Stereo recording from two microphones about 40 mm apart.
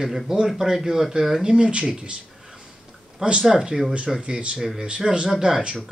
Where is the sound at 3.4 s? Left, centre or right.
Centre.